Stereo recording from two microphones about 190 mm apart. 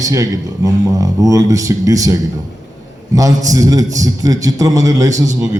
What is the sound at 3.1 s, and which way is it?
Speech, 20° right (ahead or behind).